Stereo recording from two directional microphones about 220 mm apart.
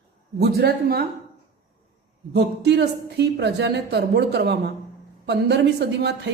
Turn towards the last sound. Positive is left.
turn(degrees=-50)  # may be behind; listen again after turning